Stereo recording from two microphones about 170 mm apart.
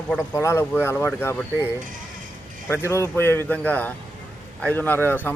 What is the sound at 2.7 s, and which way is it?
A man's voice, 15° left (ahead or behind).